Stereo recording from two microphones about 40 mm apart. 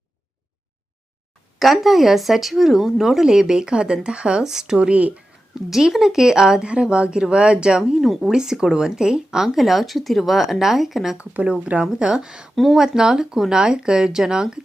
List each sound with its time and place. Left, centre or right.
1.5 s speech: centre
4.9 s speech: right
5.7 s speech: centre
7.9 s speech: centre
8.3 s speech: centre
11.4 s speech: right
11.9 s speech: right